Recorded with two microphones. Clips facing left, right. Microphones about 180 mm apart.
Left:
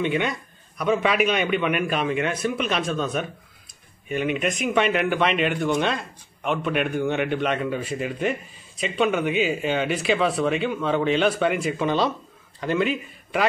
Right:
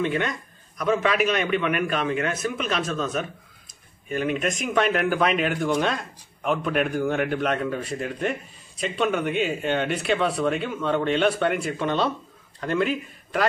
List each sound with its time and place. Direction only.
0.0 s speech: 5° left (ahead or behind)